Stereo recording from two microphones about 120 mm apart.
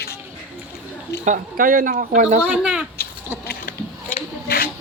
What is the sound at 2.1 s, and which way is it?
Speech, 75° right (ahead or behind).